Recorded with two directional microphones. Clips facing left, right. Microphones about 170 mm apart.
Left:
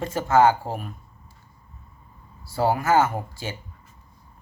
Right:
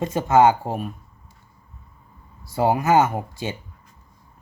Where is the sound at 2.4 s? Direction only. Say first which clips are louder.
Right 2 dB; 20° right (ahead or behind).